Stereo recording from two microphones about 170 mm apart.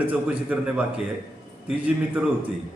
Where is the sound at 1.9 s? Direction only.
10° right (ahead or behind).